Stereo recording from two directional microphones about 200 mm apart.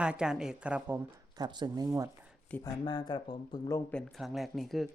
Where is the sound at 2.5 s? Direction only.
20° left (ahead or behind).